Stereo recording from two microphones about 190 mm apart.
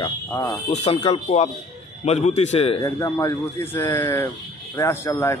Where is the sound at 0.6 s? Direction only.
35° left (ahead or behind).